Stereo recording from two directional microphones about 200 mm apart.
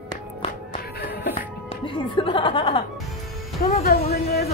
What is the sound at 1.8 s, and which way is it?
Speech, 25° left (ahead or behind).